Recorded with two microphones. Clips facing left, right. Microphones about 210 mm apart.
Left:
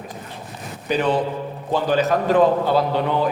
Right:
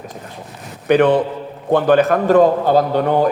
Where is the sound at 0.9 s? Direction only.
60° right (ahead or behind).